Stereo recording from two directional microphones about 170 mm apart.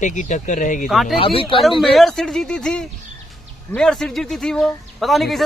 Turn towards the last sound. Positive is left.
turn(degrees=0)  # may be behind; listen again after turning